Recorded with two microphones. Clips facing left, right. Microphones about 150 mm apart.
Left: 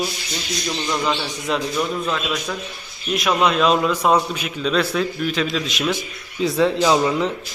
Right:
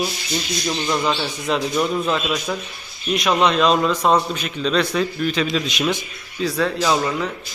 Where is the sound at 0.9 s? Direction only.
5° right (ahead or behind).